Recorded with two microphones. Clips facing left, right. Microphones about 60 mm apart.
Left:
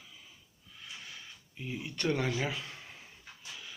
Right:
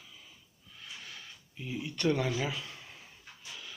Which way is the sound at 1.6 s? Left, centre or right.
Centre.